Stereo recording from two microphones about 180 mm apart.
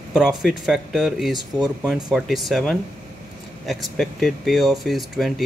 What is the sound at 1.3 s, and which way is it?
Speech, 20° right (ahead or behind).